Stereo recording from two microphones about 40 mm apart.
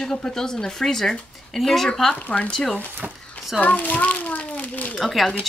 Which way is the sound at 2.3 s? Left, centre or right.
Left.